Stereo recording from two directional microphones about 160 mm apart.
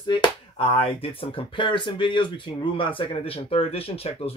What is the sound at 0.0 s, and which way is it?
Speech, 30° left (ahead or behind).